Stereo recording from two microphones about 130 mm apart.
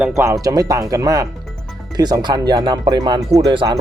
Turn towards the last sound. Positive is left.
turn(degrees=-35)  # may be behind; listen again after turning